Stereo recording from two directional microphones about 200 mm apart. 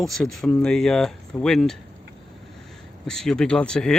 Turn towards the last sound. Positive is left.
turn(degrees=5)  # may be behind; listen again after turning